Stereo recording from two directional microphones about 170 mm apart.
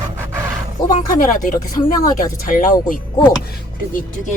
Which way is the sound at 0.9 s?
50° left (ahead or behind).